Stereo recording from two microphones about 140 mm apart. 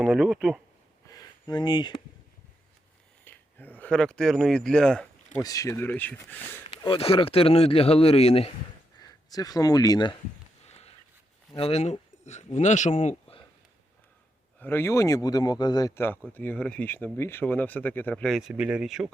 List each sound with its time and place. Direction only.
0.0 s speech: centre (ahead or behind)
1.0 s a sound: 30° left (ahead or behind)
3.2 s speech: 10° left (ahead or behind)
5.4 s speech: 25° left (ahead or behind)
6.7 s speech: 40° left (ahead or behind)
9.0 s speech: 25° left (ahead or behind)
10.7 s a sound: 50° left (ahead or behind)
11.5 s speech: 45° left (ahead or behind)
14.6 s speech: 15° left (ahead or behind)
16.0 s speech: 15° left (ahead or behind)
18.3 s speech: 5° right (ahead or behind)